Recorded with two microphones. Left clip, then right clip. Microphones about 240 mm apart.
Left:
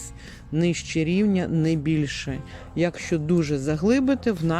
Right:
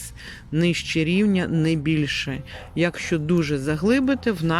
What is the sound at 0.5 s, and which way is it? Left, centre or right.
Speech, centre.